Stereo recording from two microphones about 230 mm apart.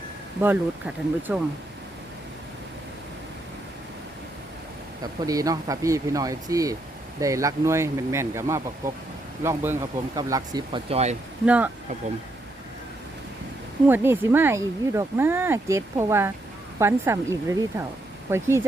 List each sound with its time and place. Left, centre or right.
0.4 s speech: centre
5.2 s speech: centre
11.4 s speech: centre
13.8 s speech: centre